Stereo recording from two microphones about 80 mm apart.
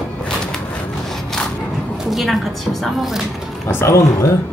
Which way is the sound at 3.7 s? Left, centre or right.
Left.